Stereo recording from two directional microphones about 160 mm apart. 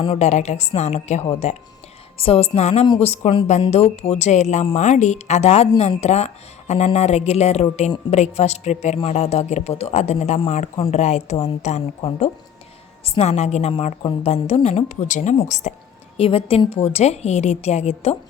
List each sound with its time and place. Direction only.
0.0 s a woman's voice: 40° left (ahead or behind)
2.8 s speech: 30° left (ahead or behind)
3.1 s a woman's voice: 40° left (ahead or behind)
16.1 s a woman's voice: 35° left (ahead or behind)